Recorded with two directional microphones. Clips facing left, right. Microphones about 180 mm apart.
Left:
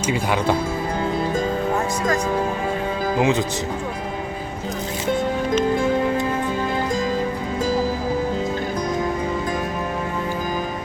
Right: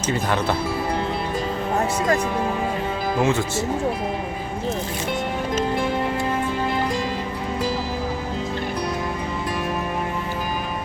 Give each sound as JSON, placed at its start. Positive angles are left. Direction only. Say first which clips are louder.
{"t": 0.1, "sound": "speech", "louder": "left 1 dB", "side_deg": 10}
{"t": 3.2, "sound": "speech", "louder": "left 1 dB", "side_deg": 15}